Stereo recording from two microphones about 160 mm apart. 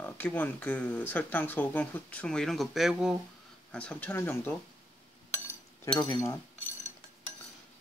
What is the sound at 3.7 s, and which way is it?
Speech, 5° left (ahead or behind).